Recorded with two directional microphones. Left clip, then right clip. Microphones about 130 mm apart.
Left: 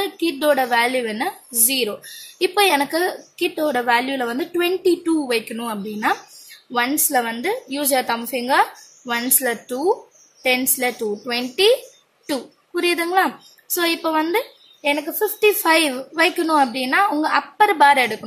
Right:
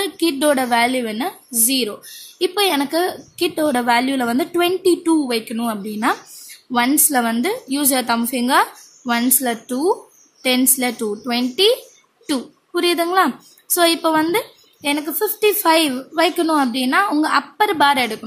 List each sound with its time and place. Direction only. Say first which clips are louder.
0.0 s a woman's voice: right 2 dB; 45° right (ahead or behind)
0.8 s a woman's voice: right 1 dB; 25° right (ahead or behind)
6.7 s a woman's voice: right 2 dB; 40° right (ahead or behind)
13.7 s a woman's voice: right 5 dB; 40° right (ahead or behind)
15.7 s a woman's voice: right 1 dB; 25° right (ahead or behind)
17.6 s a woman's voice: left 3 dB; 25° right (ahead or behind)